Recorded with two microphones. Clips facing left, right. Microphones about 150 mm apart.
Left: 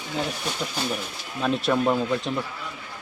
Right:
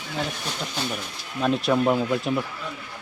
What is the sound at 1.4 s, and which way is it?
Speech, 5° right (ahead or behind).